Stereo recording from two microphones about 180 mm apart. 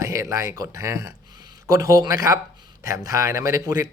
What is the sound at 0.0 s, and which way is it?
A man's voice, 15° right (ahead or behind).